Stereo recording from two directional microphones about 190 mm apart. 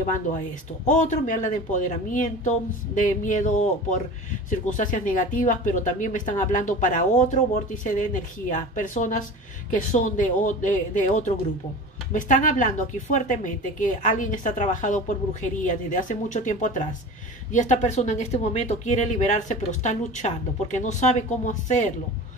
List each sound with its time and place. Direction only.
0.8 s speech: 40° left (ahead or behind)